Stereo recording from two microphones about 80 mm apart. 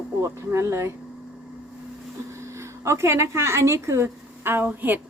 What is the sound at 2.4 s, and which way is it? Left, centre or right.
Speech, right.